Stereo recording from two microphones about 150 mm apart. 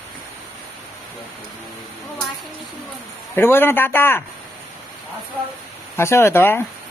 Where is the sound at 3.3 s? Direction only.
15° left (ahead or behind).